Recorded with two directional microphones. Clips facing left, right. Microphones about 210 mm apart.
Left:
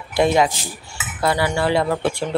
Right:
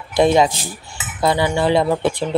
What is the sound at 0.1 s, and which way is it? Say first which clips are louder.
Speech: right 3 dB; 25° right (ahead or behind).